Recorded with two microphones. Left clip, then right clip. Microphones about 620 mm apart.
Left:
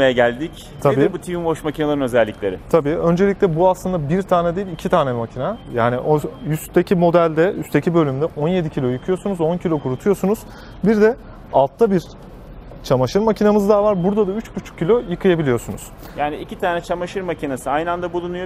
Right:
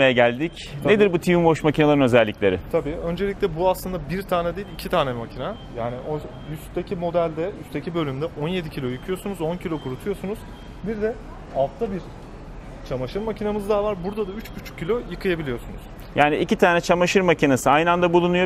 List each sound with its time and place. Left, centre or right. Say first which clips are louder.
0.0 s speech: left 2 dB; right
2.7 s speech: left 8 dB; left
5.8 s speech: left 12 dB; left
7.9 s speech: left 5 dB; left
10.9 s speech: left 11 dB; left
12.8 s a man's voice: left 11 dB; left
16.2 s speech: right 5 dB; right